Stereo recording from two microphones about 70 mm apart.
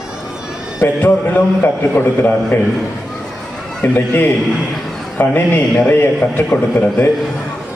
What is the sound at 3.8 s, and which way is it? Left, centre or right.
Speech, left.